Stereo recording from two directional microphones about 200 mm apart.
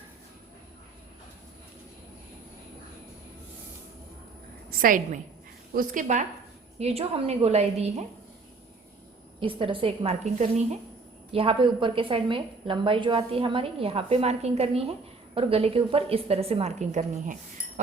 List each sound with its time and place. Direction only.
4.7 s a woman's voice: 45° right (ahead or behind)
9.4 s a woman's voice: 25° right (ahead or behind)